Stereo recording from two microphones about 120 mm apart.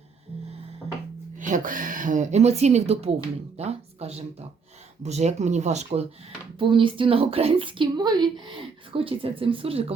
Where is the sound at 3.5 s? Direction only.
60° right (ahead or behind).